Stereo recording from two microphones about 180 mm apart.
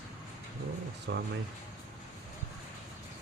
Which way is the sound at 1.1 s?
70° right (ahead or behind).